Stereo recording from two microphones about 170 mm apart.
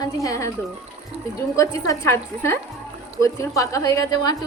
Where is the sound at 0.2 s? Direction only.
20° left (ahead or behind).